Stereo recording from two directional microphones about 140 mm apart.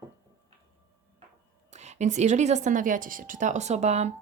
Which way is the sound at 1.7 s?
55° right (ahead or behind).